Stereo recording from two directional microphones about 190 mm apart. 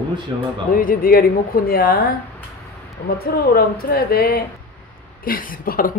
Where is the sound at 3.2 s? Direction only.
55° left (ahead or behind).